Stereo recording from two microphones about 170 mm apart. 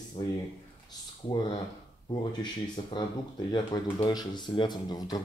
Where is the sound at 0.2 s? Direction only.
35° left (ahead or behind).